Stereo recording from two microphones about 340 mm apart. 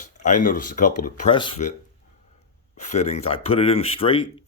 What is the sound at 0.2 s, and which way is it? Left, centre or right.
Speech, left.